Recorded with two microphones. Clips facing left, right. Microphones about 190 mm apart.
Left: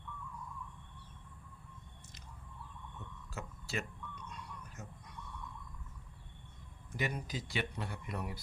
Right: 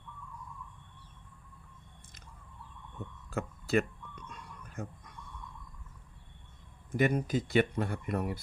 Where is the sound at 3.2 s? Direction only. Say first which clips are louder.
Right 11 dB; 55° right (ahead or behind).